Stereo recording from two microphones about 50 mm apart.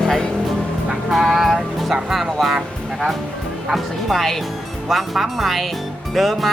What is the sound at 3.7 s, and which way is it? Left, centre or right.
Music, centre.